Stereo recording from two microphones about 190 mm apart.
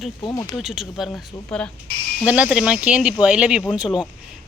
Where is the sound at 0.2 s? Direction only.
25° left (ahead or behind).